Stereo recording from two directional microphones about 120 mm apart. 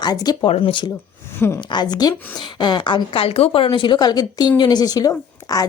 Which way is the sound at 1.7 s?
35° left (ahead or behind).